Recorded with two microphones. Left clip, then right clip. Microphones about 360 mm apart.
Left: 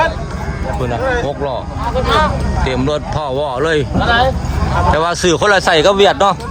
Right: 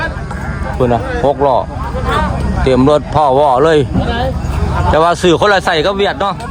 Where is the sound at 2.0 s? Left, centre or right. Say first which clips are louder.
Left 2 dB; left.